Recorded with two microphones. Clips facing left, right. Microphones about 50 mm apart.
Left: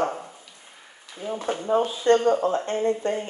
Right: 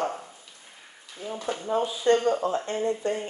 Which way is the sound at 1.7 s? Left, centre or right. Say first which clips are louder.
Left 3 dB; left.